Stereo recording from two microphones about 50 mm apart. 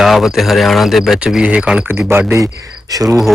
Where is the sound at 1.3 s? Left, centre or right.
Right.